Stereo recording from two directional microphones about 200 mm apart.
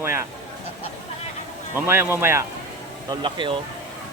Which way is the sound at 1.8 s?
10° right (ahead or behind).